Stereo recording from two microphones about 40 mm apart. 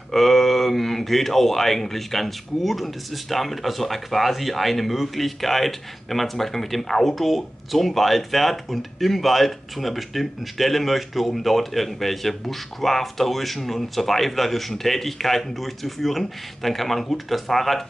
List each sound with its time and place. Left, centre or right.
0.1 s speech: centre